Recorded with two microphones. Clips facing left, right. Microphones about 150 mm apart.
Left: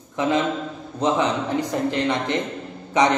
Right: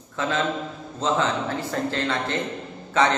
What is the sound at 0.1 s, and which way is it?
A man's voice, 15° left (ahead or behind).